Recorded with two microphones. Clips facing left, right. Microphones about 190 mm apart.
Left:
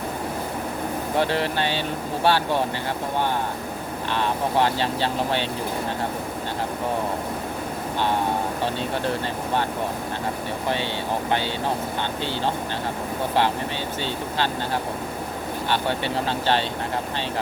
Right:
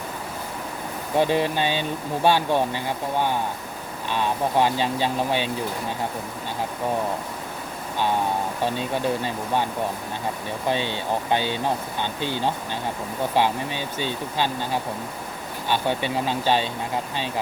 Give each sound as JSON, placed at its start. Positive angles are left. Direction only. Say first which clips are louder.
{"t": 1.2, "sound": "speech", "louder": "right 3 dB", "side_deg": -15}
{"t": 4.1, "sound": "speech", "louder": "right 1 dB", "side_deg": -15}
{"t": 11.3, "sound": "speech", "louder": "right 2 dB", "side_deg": -15}
{"t": 14.0, "sound": "speech", "louder": "right 1 dB", "side_deg": -15}
{"t": 15.7, "sound": "speech", "louder": "right 2 dB", "side_deg": -15}